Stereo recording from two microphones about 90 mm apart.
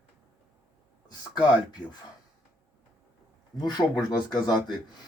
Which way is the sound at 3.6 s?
50° left (ahead or behind).